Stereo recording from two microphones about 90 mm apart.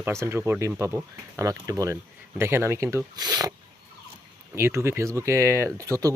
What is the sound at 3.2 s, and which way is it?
Speech, 45° right (ahead or behind).